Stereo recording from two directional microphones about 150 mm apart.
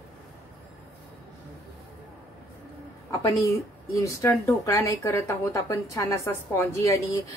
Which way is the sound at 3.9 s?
20° left (ahead or behind).